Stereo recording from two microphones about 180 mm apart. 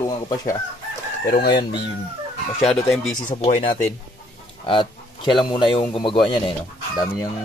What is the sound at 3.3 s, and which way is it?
Speech, 40° left (ahead or behind).